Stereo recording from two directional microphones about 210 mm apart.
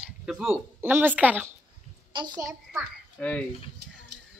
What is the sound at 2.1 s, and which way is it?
Speech, 20° right (ahead or behind).